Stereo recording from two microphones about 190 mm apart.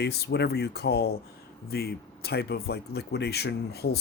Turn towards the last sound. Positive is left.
turn(degrees=55)  # may be behind; listen again after turning